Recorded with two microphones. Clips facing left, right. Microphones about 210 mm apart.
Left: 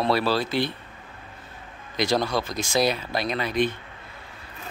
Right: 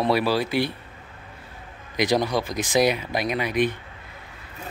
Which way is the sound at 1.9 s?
15° right (ahead or behind).